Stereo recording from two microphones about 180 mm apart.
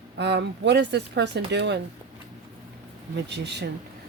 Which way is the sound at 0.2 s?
70° right (ahead or behind).